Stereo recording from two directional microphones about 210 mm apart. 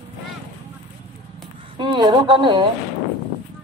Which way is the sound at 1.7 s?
20° right (ahead or behind).